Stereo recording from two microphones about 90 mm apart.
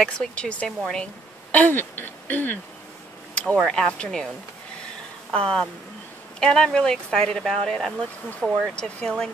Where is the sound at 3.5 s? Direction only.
5° left (ahead or behind).